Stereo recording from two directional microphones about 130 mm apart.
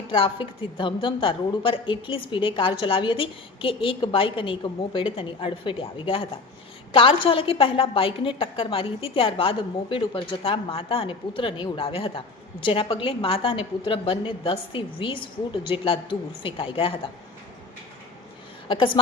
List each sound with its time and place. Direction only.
0.1 s a woman's voice: 40° left (ahead or behind)